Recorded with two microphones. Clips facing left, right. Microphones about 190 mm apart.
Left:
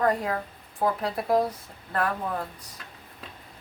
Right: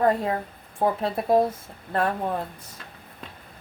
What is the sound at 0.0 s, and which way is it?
Speech, 25° right (ahead or behind).